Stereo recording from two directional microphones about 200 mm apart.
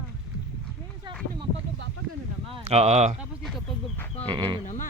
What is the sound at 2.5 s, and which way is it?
Speech, 30° right (ahead or behind).